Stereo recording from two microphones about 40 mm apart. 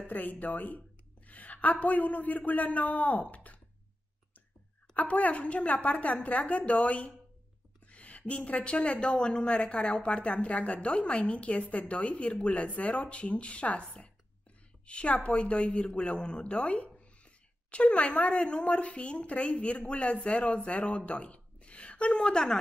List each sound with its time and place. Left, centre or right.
0.1 s a woman's voice: left
4.9 s a woman's voice: left
14.9 s a woman's voice: left